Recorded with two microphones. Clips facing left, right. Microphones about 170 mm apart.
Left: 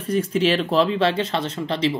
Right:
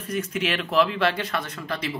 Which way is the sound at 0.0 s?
30° left (ahead or behind).